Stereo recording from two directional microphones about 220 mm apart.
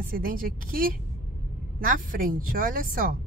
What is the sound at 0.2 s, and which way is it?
A woman's voice, 40° right (ahead or behind).